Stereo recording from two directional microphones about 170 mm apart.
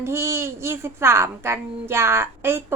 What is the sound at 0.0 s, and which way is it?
A child's voice, 15° right (ahead or behind).